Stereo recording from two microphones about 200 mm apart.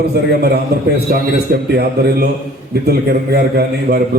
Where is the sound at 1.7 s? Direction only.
55° right (ahead or behind).